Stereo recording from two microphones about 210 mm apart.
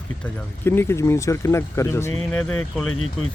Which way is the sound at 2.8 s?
80° left.